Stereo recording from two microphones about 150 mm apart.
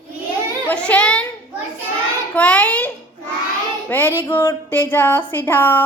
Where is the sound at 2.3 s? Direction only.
10° left (ahead or behind).